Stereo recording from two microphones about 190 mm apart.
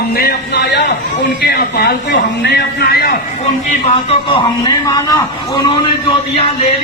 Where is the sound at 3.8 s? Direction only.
30° left (ahead or behind).